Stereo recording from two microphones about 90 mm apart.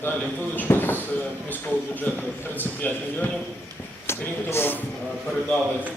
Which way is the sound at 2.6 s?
20° left (ahead or behind).